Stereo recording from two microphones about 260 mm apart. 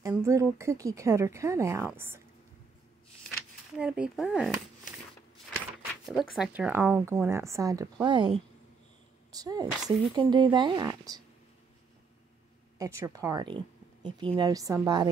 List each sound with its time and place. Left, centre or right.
0.0 s speech: centre
3.3 s a sound: centre
6.0 s speech: centre
9.3 s speech: centre
12.7 s speech: centre